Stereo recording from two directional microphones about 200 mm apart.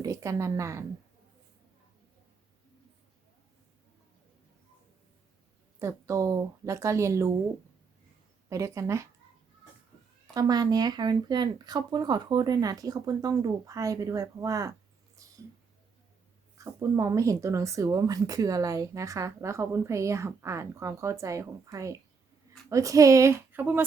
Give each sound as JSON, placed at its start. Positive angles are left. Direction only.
{"t": 0.0, "sound": "a woman's voice", "side_deg": -15}
{"t": 5.8, "sound": "speech", "side_deg": -15}
{"t": 8.4, "sound": "speech", "side_deg": -15}
{"t": 10.3, "sound": "speech", "side_deg": -20}
{"t": 16.6, "sound": "speech", "side_deg": -15}